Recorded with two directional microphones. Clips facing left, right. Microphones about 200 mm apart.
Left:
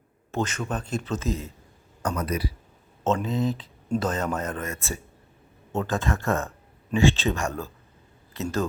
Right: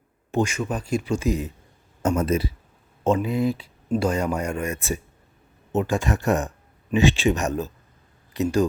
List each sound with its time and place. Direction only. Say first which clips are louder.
0.3 s speech: right 4 dB; 15° right (ahead or behind)
3.0 s speech: right 3 dB; 15° right (ahead or behind)